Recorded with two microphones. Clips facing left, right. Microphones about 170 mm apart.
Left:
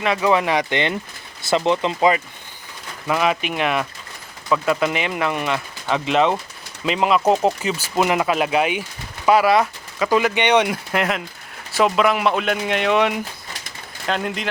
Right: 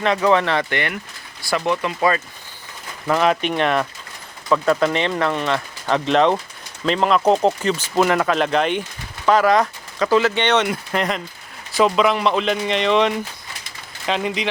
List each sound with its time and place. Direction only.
0.0 s speech: 10° left (ahead or behind)
3.1 s a man's voice: 5° left (ahead or behind)